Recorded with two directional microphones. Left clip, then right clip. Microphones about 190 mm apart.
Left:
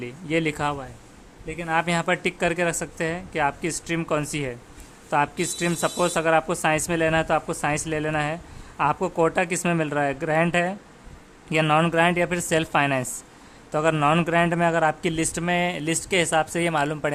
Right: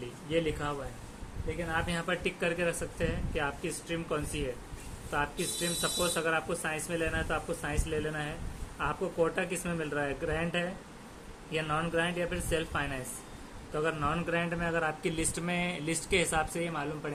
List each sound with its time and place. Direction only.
0.3 s a man's voice: 45° left (ahead or behind)